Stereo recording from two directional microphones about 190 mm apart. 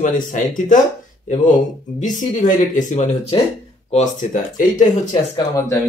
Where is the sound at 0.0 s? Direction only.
45° left (ahead or behind).